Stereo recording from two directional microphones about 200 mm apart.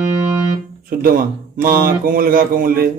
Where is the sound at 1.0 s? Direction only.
45° right (ahead or behind).